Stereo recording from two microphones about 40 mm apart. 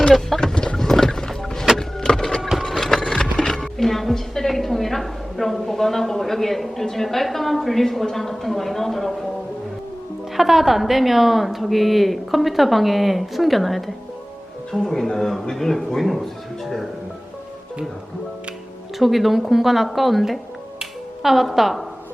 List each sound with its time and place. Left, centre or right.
0.3 s boat: left
0.9 s music: centre
2.0 s a sound: centre
3.6 s a woman's voice: centre
10.3 s a woman's voice: centre
18.9 s a woman's voice: centre
20.7 s finger snapping: centre